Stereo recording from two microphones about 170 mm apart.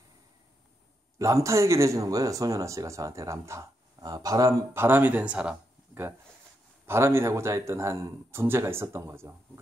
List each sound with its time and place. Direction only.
1.1 s speech: 20° right (ahead or behind)